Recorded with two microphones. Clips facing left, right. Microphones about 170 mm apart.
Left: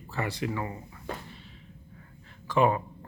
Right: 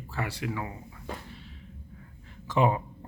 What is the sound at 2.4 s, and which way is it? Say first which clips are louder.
Speech: left 1 dB; 20° right (ahead or behind).